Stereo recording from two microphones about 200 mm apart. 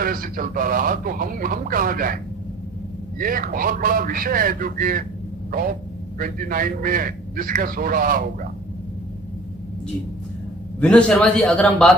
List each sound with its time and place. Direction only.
0.0 s speech: 45° right (ahead or behind)
3.2 s speech: 45° right (ahead or behind)
6.1 s speech: 45° right (ahead or behind)
10.8 s a man's voice: 5° left (ahead or behind)